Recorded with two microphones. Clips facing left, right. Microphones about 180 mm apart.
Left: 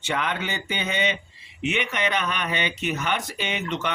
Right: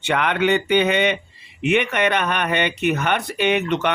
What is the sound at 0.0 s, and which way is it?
Speech, 65° right (ahead or behind).